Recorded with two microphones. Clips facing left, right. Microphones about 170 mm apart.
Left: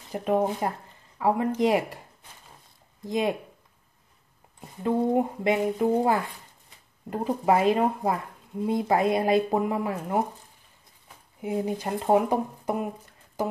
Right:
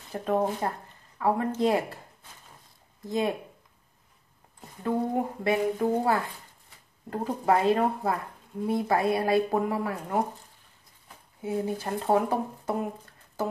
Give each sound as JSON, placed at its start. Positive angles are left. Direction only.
{"t": 0.1, "sound": "speech", "side_deg": 15}
{"t": 3.1, "sound": "speech", "side_deg": 15}
{"t": 4.6, "sound": "speech", "side_deg": 20}
{"t": 11.4, "sound": "speech", "side_deg": 15}